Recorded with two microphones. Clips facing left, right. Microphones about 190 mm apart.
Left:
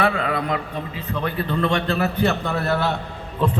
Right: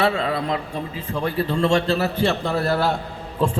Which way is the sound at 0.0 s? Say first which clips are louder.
Even; 25° right (ahead or behind).